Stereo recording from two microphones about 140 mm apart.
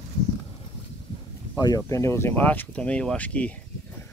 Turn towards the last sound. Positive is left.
turn(degrees=10)  # may be behind; listen again after turning